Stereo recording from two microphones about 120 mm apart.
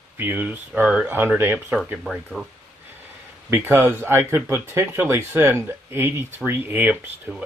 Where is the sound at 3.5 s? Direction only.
20° right (ahead or behind).